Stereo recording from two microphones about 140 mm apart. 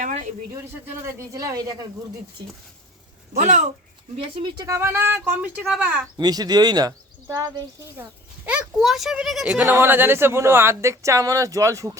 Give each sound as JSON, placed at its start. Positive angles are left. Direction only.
{"t": 0.0, "sound": "a sound", "side_deg": -60}
{"t": 1.0, "sound": "speech", "side_deg": -25}
{"t": 3.3, "sound": "speech", "side_deg": -55}
{"t": 4.4, "sound": "speech", "side_deg": -30}
{"t": 6.1, "sound": "speech", "side_deg": -30}
{"t": 8.4, "sound": "speech", "side_deg": -5}